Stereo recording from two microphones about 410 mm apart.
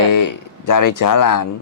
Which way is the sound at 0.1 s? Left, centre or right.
Left.